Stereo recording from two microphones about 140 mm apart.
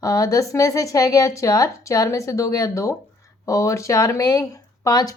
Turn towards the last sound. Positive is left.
turn(degrees=25)  # may be behind; listen again after turning